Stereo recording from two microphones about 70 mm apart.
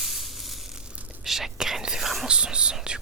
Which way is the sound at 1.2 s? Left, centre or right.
Centre.